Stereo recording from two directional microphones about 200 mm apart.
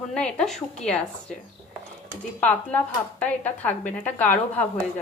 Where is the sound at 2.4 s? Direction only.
5° left (ahead or behind).